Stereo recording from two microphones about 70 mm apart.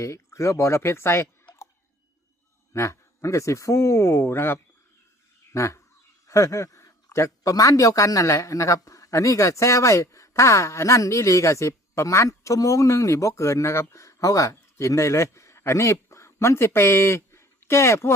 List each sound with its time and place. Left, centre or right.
0.0 s speech: left
2.7 s a man's voice: left